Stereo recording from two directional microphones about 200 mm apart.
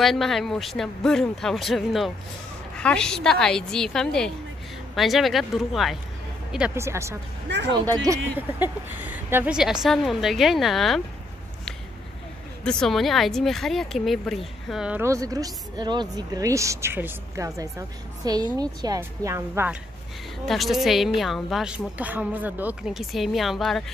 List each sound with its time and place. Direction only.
0.0 s speech: centre (ahead or behind)
7.4 s a sound: 60° right (ahead or behind)
8.0 s speech: 15° right (ahead or behind)
12.6 s speech: 5° left (ahead or behind)
20.4 s speech: centre (ahead or behind)